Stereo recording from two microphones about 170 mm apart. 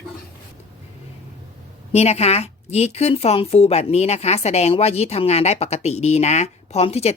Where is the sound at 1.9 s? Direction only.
40° left (ahead or behind).